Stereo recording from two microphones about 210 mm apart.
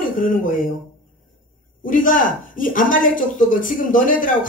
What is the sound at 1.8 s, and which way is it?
Speech, 40° left (ahead or behind).